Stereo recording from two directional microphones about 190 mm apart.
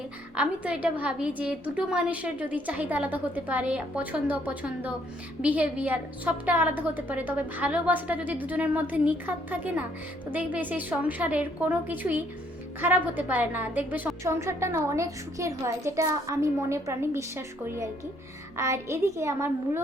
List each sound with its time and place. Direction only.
0.3 s a woman's voice: 5° right (ahead or behind)